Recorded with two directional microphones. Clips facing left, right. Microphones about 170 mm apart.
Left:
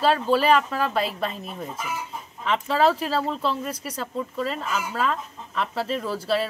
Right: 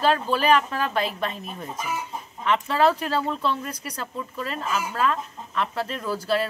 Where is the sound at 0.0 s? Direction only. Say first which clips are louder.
Left 2 dB; centre (ahead or behind).